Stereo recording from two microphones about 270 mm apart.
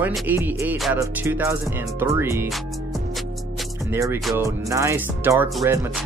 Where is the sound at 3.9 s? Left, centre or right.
Centre.